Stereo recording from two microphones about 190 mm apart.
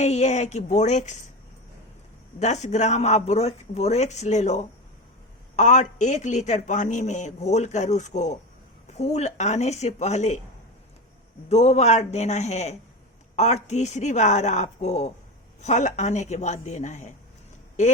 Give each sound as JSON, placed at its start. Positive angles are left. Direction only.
{"t": 0.0, "sound": "a man's voice", "side_deg": 35}
{"t": 2.4, "sound": "a man's voice", "side_deg": 35}
{"t": 11.4, "sound": "a man's voice", "side_deg": 35}